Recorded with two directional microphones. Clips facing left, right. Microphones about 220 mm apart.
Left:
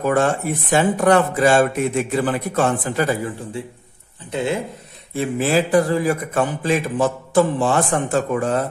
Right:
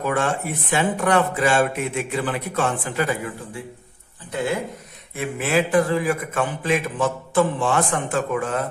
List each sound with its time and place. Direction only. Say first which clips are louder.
0.0 s speech: left 5 dB; 40° left (ahead or behind)
4.3 s speech: left 2 dB; 25° left (ahead or behind)
5.1 s speech: left 3 dB; 35° left (ahead or behind)